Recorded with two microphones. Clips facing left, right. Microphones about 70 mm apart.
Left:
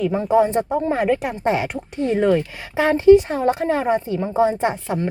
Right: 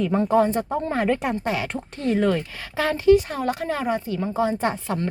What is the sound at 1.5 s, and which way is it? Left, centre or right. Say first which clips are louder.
Speech: left 10 dB; left.